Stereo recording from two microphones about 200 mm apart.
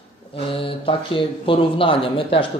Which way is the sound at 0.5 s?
25° left (ahead or behind).